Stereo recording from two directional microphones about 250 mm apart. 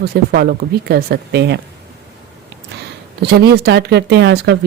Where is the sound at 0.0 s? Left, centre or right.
Right.